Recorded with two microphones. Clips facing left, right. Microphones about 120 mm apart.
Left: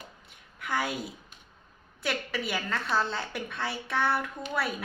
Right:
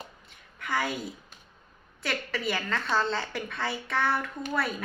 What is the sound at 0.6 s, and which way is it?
Speech, centre (ahead or behind).